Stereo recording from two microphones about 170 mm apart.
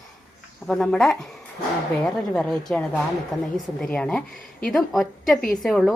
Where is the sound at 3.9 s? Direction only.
5° left (ahead or behind).